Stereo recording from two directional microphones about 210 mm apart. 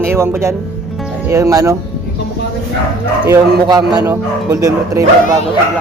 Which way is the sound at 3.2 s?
15° right (ahead or behind).